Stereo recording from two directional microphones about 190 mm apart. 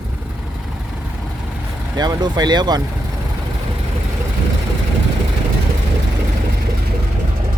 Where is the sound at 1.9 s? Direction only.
20° right (ahead or behind).